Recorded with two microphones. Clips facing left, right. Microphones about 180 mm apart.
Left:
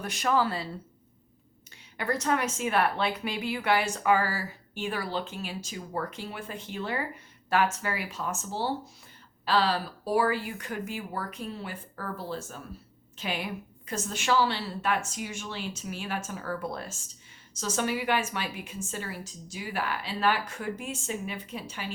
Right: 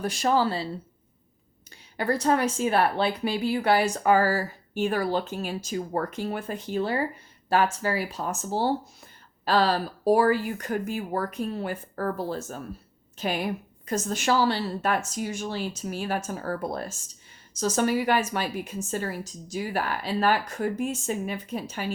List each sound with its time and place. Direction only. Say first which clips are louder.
0.0 s a woman's voice: right 3 dB; 30° right (ahead or behind)
2.0 s a woman's voice: right 5 dB; 35° right (ahead or behind)